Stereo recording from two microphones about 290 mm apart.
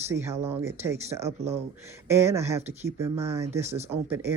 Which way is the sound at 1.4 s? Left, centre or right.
Right.